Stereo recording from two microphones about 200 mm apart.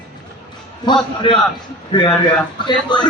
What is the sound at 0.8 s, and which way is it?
Speech, 20° left (ahead or behind).